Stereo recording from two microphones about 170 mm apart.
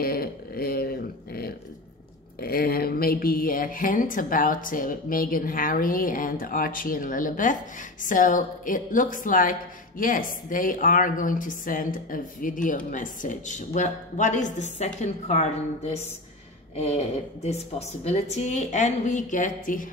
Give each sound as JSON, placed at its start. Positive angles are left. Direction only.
{"t": 0.0, "sound": "a woman's voice", "side_deg": 60}